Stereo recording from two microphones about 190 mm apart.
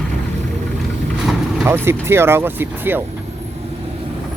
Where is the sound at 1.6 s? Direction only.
15° right (ahead or behind).